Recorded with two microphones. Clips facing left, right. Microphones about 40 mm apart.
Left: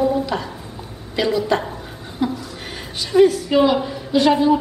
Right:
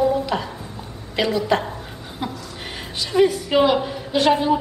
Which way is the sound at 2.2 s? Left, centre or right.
Centre.